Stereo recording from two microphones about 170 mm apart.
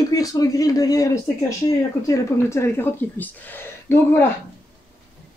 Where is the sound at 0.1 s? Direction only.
20° left (ahead or behind).